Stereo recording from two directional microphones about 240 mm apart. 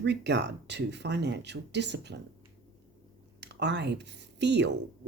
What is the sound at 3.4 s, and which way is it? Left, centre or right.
Speech, right.